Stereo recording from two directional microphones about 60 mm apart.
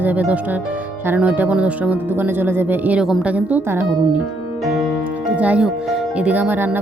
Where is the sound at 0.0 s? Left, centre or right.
Right.